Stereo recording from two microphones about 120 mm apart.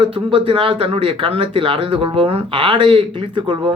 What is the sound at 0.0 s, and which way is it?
A man's voice, 50° right (ahead or behind).